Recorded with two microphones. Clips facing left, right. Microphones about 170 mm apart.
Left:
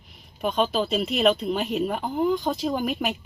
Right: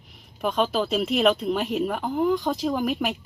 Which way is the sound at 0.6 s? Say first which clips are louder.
Even; 25° left (ahead or behind).